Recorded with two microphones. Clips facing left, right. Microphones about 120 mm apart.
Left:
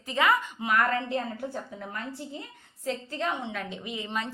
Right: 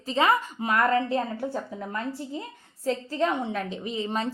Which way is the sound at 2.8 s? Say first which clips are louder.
Right 5 dB; 35° right (ahead or behind).